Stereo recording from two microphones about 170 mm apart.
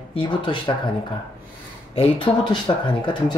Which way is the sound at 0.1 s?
30° left (ahead or behind).